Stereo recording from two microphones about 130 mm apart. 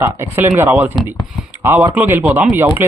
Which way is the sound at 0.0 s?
15° right (ahead or behind).